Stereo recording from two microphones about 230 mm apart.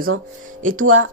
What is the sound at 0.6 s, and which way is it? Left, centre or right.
Speech, right.